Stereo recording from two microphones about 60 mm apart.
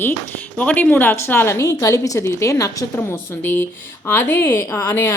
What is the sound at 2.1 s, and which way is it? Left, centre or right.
Speech, left.